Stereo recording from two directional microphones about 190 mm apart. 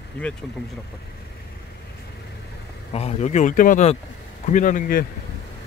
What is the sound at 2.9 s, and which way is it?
A man's voice, 35° left (ahead or behind).